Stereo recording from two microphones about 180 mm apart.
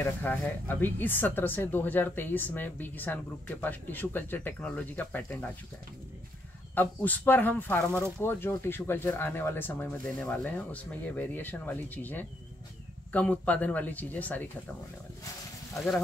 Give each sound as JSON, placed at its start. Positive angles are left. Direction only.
{"t": 0.0, "sound": "speech", "side_deg": 10}
{"t": 6.7, "sound": "speech", "side_deg": 10}
{"t": 15.7, "sound": "speech", "side_deg": 0}